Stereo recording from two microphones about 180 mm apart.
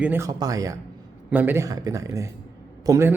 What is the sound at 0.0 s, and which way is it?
Speech, 15° right (ahead or behind).